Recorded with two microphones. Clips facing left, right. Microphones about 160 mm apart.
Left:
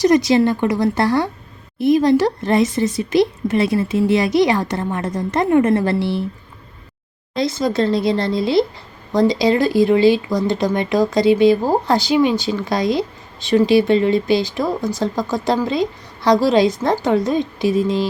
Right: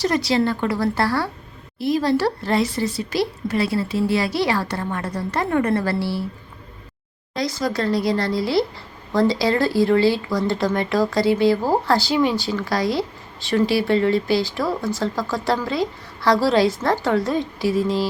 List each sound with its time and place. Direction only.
0.0 s speech: 20° left (ahead or behind)
7.3 s speech: 25° left (ahead or behind)